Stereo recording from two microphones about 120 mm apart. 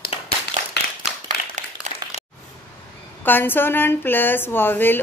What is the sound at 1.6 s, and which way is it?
Applause, 75° right (ahead or behind).